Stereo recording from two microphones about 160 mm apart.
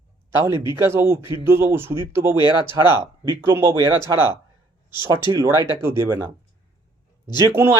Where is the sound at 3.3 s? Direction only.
15° right (ahead or behind).